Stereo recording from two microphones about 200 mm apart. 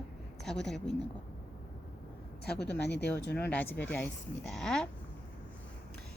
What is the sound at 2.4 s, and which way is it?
Speech, 55° left (ahead or behind).